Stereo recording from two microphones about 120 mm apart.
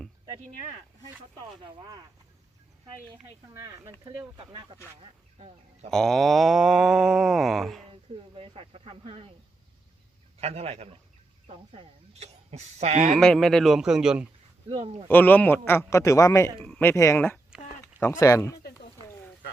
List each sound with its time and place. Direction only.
1.6 s speech: 40° right (ahead or behind)
3.5 s speech: 25° right (ahead or behind)
5.9 s a sound: 5° left (ahead or behind)
8.4 s speech: 55° right (ahead or behind)
10.4 s speech: 60° right (ahead or behind); by 13.1 s 75° right (ahead or behind)
13.1 s a sound: 5° left (ahead or behind)
15.1 s a man's voice: 15° left (ahead or behind)
16.6 s speech: 5° left (ahead or behind)
16.9 s a man's voice: 25° left (ahead or behind)